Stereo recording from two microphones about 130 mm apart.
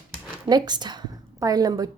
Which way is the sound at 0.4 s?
35° right (ahead or behind).